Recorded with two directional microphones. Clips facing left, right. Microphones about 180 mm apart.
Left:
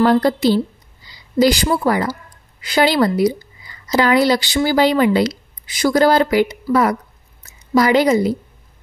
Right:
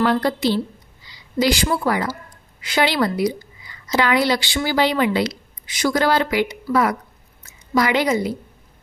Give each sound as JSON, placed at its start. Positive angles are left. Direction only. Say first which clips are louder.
{"t": 0.0, "sound": "a woman's voice", "louder": "left 5 dB", "side_deg": 40}
{"t": 1.0, "sound": "a sound", "louder": "left 5 dB", "side_deg": 40}
{"t": 1.9, "sound": "a woman's voice", "louder": "left 4 dB", "side_deg": 40}